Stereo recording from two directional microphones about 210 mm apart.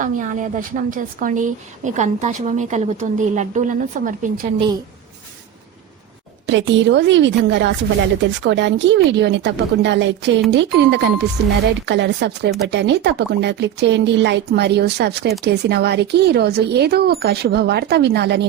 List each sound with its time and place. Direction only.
0.0 s a woman's voice: 35° right (ahead or behind)
6.5 s speech: 60° right (ahead or behind)